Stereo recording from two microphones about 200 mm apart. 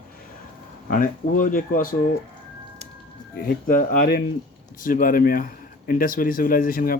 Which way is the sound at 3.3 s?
45° left (ahead or behind).